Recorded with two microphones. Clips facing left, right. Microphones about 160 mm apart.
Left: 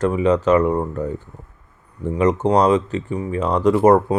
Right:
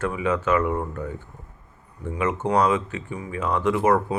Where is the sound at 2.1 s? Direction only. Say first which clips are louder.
Left 6 dB; 35° left (ahead or behind).